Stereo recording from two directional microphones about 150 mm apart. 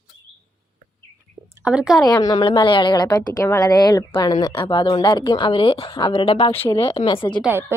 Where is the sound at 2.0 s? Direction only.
25° left (ahead or behind).